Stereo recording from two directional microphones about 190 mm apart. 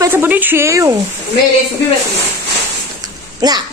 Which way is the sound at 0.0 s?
10° right (ahead or behind).